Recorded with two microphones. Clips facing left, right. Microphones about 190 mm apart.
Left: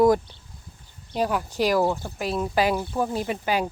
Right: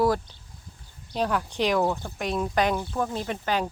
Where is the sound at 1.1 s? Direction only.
5° left (ahead or behind).